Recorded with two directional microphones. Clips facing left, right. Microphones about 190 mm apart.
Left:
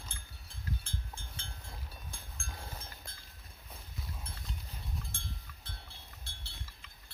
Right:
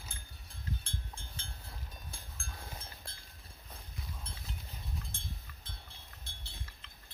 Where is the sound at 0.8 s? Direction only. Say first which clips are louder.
Left 1 dB; 35° right (ahead or behind).